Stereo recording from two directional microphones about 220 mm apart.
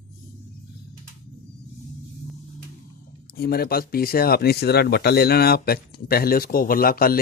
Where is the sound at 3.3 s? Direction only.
45° left (ahead or behind).